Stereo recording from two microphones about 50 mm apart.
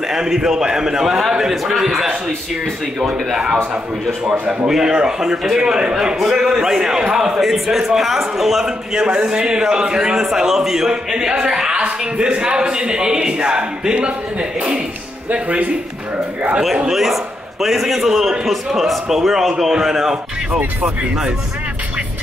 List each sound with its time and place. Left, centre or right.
0.1 s a man's voice: centre
1.0 s a man's voice: centre; by 15.7 s right
16.7 s a man's voice: centre